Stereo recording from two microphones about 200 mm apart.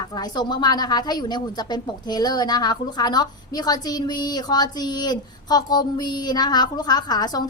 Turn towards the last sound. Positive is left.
turn(degrees=20)  # may be behind; listen again after turning